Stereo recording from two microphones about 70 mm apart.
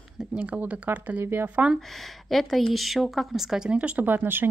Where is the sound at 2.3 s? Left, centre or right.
Centre.